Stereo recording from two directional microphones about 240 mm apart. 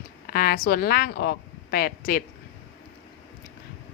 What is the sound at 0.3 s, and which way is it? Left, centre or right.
A woman's voice, left.